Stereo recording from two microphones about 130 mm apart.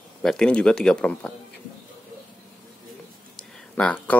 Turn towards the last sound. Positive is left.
turn(degrees=10)  # may be behind; listen again after turning